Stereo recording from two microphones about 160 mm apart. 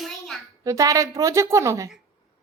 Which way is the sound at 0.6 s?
20° right (ahead or behind).